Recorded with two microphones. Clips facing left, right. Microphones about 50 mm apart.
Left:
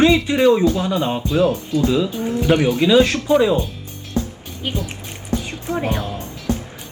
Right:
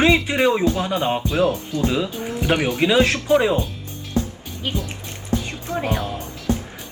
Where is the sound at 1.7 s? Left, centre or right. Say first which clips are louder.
Left 4 dB; right.